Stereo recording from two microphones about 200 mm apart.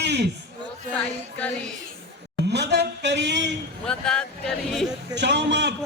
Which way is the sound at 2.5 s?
55° right (ahead or behind).